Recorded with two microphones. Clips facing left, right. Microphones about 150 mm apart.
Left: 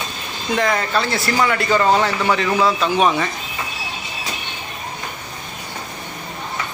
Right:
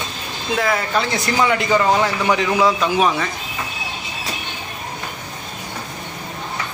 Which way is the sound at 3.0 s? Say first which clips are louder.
Left 3 dB; centre (ahead or behind).